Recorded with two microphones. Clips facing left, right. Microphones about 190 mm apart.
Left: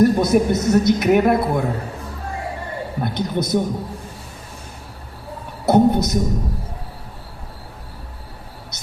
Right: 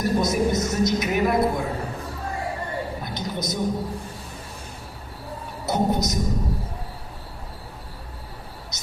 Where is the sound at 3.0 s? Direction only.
60° left (ahead or behind).